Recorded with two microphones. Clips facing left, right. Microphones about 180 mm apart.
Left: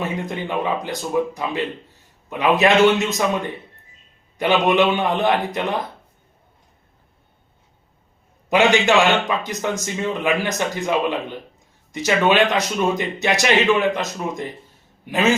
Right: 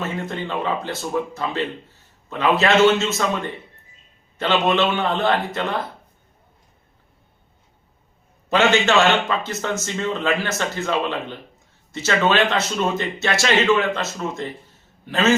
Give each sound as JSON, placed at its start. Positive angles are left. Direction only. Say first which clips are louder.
{"t": 0.0, "sound": "speech", "louder": "left 1 dB", "side_deg": 15}
{"t": 8.4, "sound": "speech", "louder": "left 2 dB", "side_deg": 15}